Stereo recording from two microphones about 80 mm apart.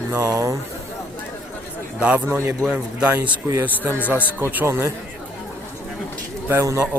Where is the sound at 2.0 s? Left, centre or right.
Centre.